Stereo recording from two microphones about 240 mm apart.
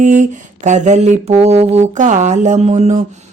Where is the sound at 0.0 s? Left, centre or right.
Right.